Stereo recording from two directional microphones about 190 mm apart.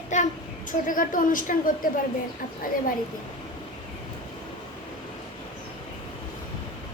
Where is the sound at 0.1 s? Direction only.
40° left (ahead or behind).